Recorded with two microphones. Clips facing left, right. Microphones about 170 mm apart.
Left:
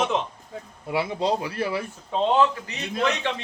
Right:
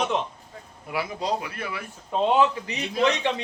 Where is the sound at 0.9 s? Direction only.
25° left (ahead or behind).